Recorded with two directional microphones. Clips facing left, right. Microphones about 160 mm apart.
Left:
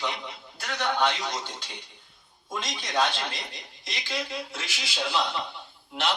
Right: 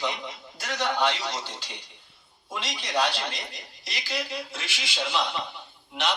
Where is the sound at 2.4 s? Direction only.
Centre (ahead or behind).